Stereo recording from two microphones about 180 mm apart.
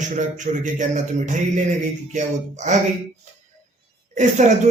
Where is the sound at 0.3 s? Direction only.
45° right (ahead or behind).